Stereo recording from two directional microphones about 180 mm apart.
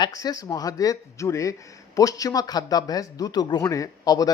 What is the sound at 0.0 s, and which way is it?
A man's voice, 20° left (ahead or behind).